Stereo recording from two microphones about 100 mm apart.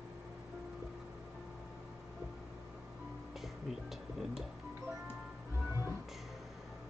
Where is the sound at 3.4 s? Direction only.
5° right (ahead or behind).